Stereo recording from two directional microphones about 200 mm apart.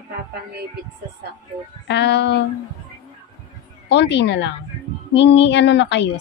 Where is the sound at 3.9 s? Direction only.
60° left (ahead or behind).